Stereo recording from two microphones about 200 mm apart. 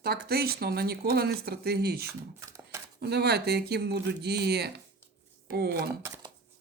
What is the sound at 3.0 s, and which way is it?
Speech, 55° right (ahead or behind).